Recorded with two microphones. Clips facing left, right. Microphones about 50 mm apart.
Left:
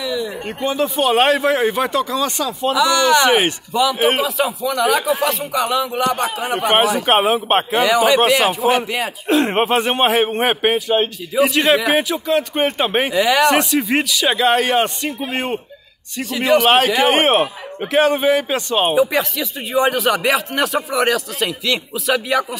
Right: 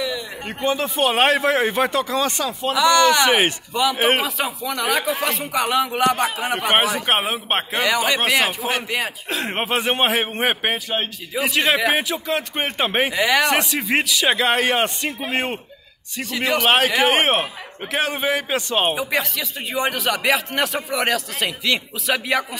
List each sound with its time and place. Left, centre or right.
0.0 s a sound: centre
0.8 s speech: right
2.7 s a man's voice: centre
5.4 s a man's voice: centre
7.2 s a man's voice: centre
16.2 s a man's voice: centre
20.2 s a man's voice: centre